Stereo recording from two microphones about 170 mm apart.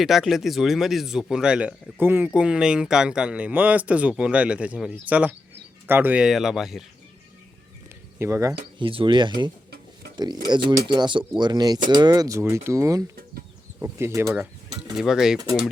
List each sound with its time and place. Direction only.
0.0 s speech: centre (ahead or behind)
8.2 s speech: 15° right (ahead or behind)
8.8 s speech: 30° right (ahead or behind)
14.9 s speech: 5° right (ahead or behind)